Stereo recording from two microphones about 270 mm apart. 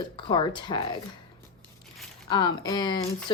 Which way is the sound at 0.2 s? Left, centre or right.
Centre.